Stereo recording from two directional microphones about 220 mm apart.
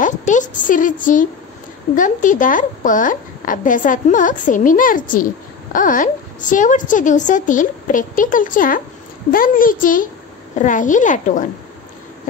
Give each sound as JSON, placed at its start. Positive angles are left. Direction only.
{"t": 0.0, "sound": "a woman's voice", "side_deg": 35}